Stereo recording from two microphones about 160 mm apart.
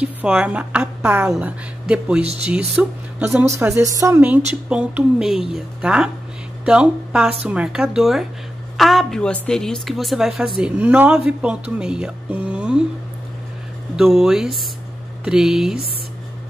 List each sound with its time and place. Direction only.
0.0 s a woman's voice: 5° right (ahead or behind)
13.9 s a woman's voice: centre (ahead or behind)